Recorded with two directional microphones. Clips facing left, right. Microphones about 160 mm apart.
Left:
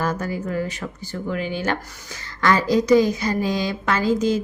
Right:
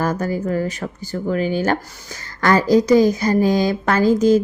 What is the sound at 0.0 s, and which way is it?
A woman's voice, 45° right (ahead or behind).